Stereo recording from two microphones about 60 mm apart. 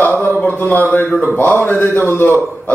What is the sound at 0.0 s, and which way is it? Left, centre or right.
A man's voice, left.